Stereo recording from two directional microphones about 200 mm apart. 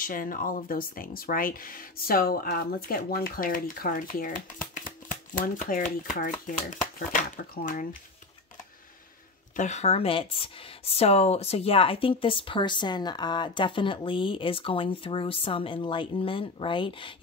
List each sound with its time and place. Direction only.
0.0 s speech: 45° left (ahead or behind)
9.6 s speech: 35° left (ahead or behind)